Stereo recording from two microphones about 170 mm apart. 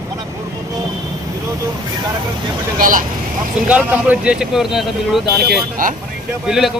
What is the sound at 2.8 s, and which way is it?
Speech, 50° right (ahead or behind).